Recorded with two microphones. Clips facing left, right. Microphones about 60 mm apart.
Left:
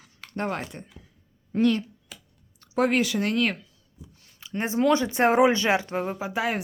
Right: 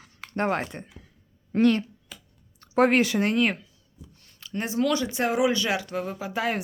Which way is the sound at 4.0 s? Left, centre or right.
Centre.